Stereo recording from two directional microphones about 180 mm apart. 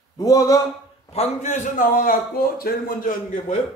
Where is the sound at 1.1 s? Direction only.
35° left (ahead or behind).